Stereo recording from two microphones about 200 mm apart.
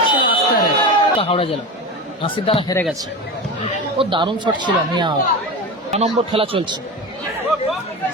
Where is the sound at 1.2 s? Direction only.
30° left (ahead or behind).